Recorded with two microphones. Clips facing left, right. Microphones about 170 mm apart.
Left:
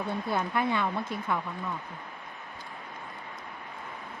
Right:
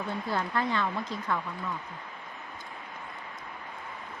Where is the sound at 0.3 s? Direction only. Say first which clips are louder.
Left 1 dB; 15° left (ahead or behind).